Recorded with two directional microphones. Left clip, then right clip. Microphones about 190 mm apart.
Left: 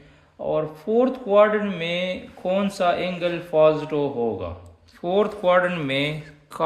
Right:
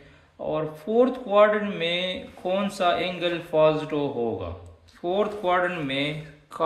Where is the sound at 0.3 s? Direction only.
20° left (ahead or behind).